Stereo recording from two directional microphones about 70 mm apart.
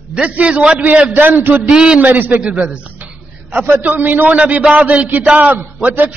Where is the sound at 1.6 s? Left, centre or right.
Centre.